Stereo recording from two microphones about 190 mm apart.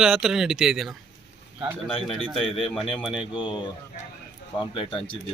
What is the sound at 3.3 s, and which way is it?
Speech, 25° left (ahead or behind).